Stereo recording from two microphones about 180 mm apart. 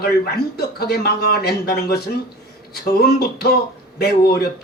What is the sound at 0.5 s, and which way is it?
A man's voice, 60° left (ahead or behind).